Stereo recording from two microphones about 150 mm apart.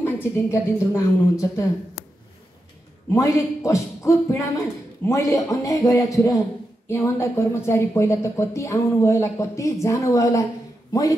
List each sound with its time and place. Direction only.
0.0 s speech: 15° left (ahead or behind)
3.2 s speech: 20° left (ahead or behind)